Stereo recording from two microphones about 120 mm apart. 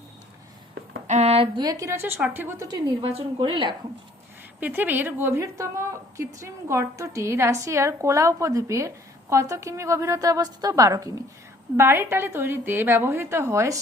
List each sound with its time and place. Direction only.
1.0 s a sound: 70° right (ahead or behind)
1.5 s a woman's voice: 30° right (ahead or behind)
1.9 s a woman's voice: 20° right (ahead or behind)
2.6 s a woman's voice: 30° right (ahead or behind)
3.0 s a woman's voice: 55° right (ahead or behind)
4.6 s a woman's voice: 15° right (ahead or behind); by 11.2 s 30° right (ahead or behind)
11.8 s a woman's voice: 20° right (ahead or behind)